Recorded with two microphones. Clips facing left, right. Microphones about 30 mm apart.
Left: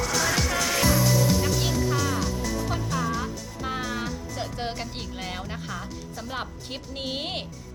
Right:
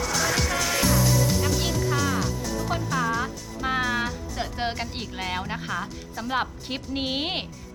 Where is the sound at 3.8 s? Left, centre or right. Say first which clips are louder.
Right 4 dB; centre.